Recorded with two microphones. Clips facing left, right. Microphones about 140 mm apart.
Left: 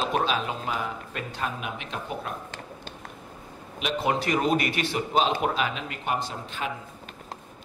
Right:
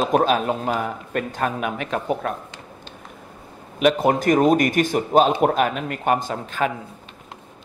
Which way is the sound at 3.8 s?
50° right (ahead or behind).